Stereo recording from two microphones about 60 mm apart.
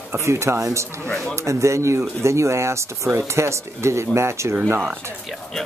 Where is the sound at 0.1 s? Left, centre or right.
Right.